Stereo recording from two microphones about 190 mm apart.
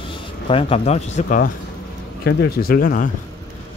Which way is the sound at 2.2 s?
60° left (ahead or behind).